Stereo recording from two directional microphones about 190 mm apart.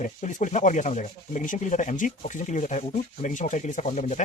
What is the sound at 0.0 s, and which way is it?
Speech, 40° left (ahead or behind).